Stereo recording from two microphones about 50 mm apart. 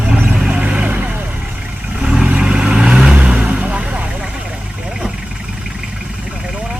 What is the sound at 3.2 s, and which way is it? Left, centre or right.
Vehicle, right.